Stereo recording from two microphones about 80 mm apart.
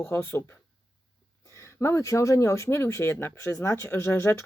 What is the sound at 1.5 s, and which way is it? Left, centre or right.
Speech, left.